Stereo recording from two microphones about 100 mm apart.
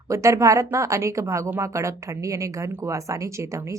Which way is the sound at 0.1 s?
30° right (ahead or behind).